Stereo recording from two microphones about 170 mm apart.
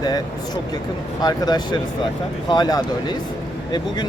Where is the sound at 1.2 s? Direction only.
25° left (ahead or behind).